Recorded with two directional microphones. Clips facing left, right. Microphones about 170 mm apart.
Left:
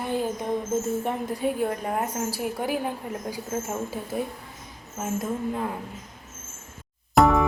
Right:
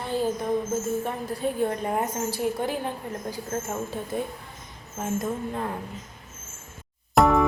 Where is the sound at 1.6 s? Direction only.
Centre (ahead or behind).